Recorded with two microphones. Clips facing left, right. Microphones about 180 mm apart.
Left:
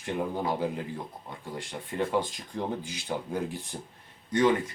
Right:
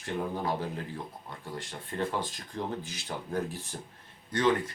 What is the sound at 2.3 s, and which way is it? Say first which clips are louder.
Speech: left 2 dB; 15° left (ahead or behind).